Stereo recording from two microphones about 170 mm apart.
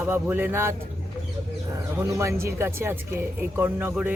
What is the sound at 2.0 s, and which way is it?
Speech, 15° right (ahead or behind).